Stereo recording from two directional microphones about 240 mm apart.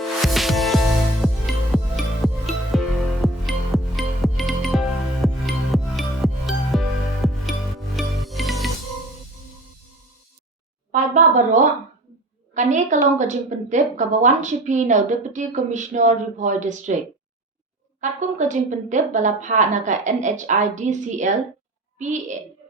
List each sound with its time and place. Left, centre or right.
0.3 s music: centre
10.9 s a sound: right
12.5 s a woman's voice: right
18.0 s a woman's voice: right